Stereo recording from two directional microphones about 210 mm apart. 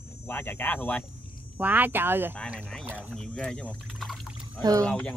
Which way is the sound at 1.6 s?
10° right (ahead or behind).